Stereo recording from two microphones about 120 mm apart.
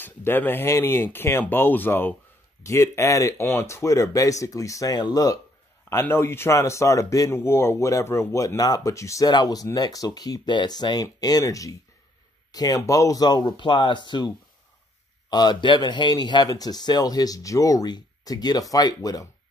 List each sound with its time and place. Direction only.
0.0 s speech: 15° left (ahead or behind)
5.9 s speech: 20° left (ahead or behind)